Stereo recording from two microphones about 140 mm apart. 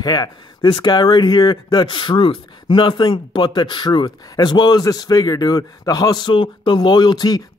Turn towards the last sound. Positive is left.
turn(degrees=30)  # may be behind; listen again after turning